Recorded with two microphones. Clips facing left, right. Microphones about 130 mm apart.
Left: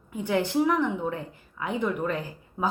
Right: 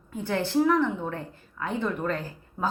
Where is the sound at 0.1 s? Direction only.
15° left (ahead or behind).